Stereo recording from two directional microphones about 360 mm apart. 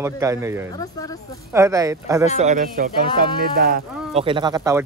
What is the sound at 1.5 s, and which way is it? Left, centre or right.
Speech, centre.